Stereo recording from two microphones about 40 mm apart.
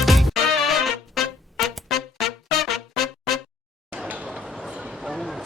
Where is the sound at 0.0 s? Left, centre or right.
Centre.